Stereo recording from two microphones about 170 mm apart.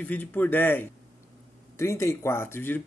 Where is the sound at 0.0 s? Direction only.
10° left (ahead or behind).